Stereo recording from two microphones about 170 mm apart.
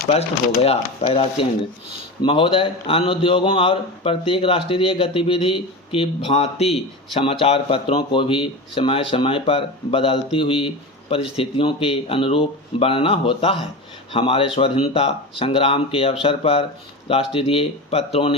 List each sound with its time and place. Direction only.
0.1 s speech: 35° left (ahead or behind)